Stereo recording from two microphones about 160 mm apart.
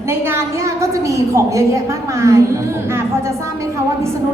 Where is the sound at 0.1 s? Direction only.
15° right (ahead or behind).